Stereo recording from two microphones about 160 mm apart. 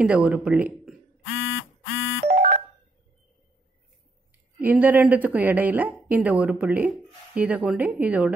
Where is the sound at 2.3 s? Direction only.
60° right (ahead or behind).